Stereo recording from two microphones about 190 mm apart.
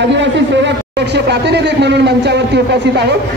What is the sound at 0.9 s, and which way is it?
A man's voice, 60° right (ahead or behind).